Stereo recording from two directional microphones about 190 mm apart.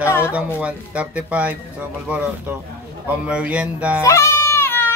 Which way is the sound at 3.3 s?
5° right (ahead or behind).